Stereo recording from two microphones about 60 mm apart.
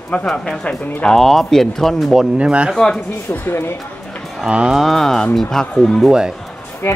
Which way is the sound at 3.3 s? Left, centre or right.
Left.